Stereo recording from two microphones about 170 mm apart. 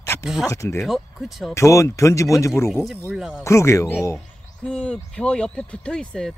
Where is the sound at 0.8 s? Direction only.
Centre (ahead or behind).